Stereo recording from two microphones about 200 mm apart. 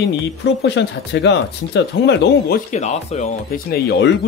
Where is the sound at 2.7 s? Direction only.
35° left (ahead or behind).